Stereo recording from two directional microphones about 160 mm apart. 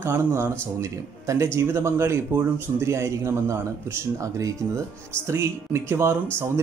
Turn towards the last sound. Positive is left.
turn(degrees=-15)  # may be behind; listen again after turning